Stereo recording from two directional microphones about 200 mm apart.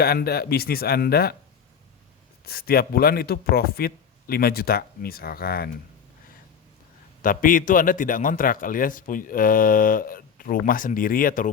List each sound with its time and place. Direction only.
0.0 s a man's voice: 50° left (ahead or behind)
2.4 s a man's voice: 50° left (ahead or behind)
7.2 s a man's voice: 45° left (ahead or behind)